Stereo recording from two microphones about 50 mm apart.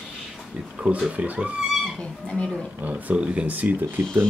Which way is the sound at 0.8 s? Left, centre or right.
Right.